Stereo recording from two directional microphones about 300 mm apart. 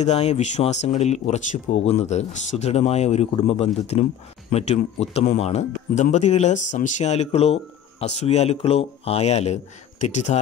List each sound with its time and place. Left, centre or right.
0.0 s speech: left